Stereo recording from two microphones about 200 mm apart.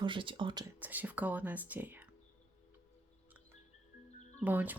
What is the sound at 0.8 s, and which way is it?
Speech, 10° right (ahead or behind).